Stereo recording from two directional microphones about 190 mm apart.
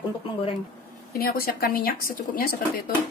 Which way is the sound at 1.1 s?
50° left (ahead or behind).